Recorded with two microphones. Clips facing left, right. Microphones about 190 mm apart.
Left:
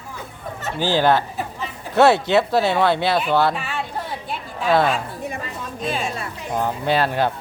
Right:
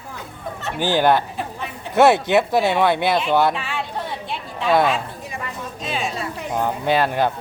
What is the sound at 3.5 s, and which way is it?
Speech, centre (ahead or behind).